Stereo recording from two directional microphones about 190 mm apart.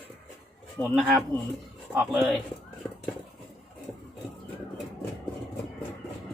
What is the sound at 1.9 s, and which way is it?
Speech, 5° right (ahead or behind).